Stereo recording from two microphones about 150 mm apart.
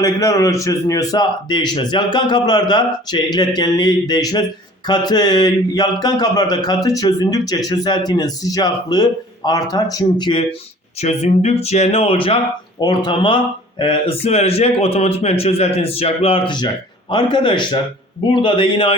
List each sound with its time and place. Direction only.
0.0 s a man's voice: 20° left (ahead or behind)
11.0 s speech: 45° left (ahead or behind)